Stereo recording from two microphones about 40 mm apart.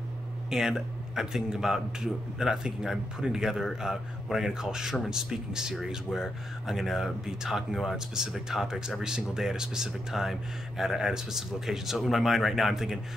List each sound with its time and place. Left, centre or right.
0.5 s speech: centre
8.5 s speech: centre